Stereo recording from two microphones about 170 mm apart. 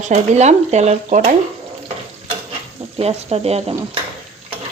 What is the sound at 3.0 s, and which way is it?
Speech, 35° right (ahead or behind).